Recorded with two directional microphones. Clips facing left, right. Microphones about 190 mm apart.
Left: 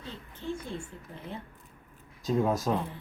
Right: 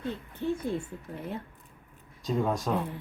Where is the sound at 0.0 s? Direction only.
60° right (ahead or behind).